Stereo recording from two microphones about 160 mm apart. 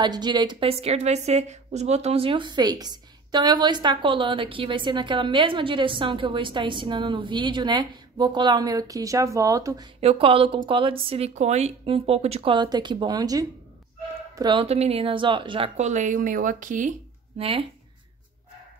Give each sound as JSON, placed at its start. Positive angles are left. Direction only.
{"t": 0.0, "sound": "a woman's voice", "side_deg": -25}
{"t": 9.9, "sound": "speech", "side_deg": -40}
{"t": 15.8, "sound": "speech", "side_deg": -50}
{"t": 17.4, "sound": "speech", "side_deg": -35}